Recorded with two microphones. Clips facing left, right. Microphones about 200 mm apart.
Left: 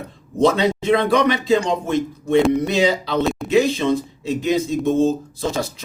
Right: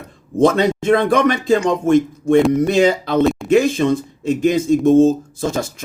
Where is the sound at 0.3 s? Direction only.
50° right (ahead or behind).